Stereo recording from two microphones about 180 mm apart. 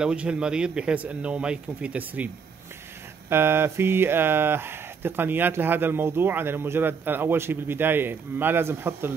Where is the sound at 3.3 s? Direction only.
15° right (ahead or behind).